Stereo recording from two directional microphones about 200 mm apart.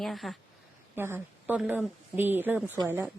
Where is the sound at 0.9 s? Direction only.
10° right (ahead or behind).